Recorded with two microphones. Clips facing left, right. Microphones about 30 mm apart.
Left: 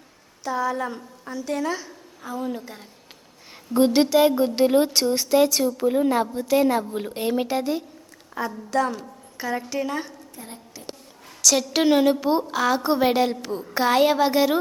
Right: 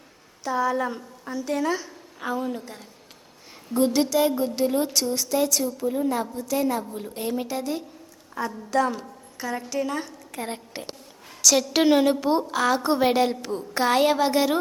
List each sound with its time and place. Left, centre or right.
0.4 s a woman's voice: centre
3.8 s a woman's voice: left
8.4 s a woman's voice: centre
9.4 s a woman's voice: centre
10.4 s a woman's voice: right
10.8 s a woman's voice: right
11.4 s a woman's voice: centre